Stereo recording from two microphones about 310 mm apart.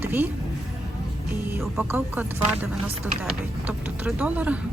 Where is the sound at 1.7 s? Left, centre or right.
Centre.